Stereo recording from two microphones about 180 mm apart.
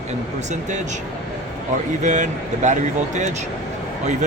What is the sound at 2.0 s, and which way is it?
Speech, 45° right (ahead or behind).